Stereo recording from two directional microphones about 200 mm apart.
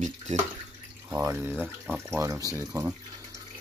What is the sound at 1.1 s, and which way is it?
Speech, 10° right (ahead or behind).